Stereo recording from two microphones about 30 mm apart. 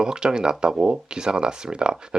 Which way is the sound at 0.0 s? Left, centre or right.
Right.